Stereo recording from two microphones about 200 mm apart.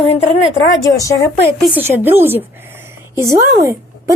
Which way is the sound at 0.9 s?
15° left (ahead or behind).